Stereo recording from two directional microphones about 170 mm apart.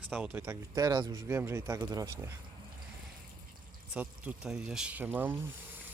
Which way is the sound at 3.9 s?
5° right (ahead or behind).